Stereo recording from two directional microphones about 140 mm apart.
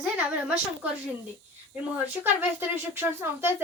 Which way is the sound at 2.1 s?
15° right (ahead or behind).